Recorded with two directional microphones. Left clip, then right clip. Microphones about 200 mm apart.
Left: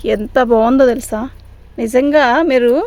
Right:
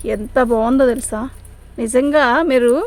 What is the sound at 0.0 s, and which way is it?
A woman's voice, 40° left (ahead or behind).